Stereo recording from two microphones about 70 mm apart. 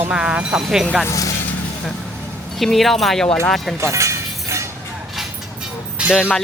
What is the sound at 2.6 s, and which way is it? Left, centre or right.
A woman's voice, centre.